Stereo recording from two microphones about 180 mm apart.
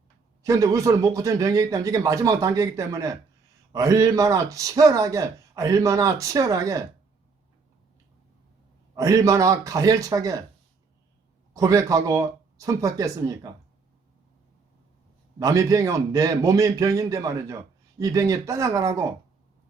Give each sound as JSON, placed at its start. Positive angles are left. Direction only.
{"t": 0.4, "sound": "a man's voice", "side_deg": -15}
{"t": 9.0, "sound": "a man's voice", "side_deg": -20}
{"t": 11.5, "sound": "a man's voice", "side_deg": -20}
{"t": 15.4, "sound": "speech", "side_deg": -20}